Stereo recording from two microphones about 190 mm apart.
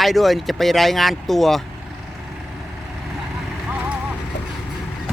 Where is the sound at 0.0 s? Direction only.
Centre (ahead or behind).